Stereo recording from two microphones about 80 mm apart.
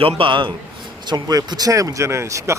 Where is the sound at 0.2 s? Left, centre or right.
Right.